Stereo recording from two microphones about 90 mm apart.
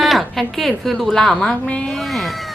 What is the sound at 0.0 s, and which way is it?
A woman's voice, centre (ahead or behind).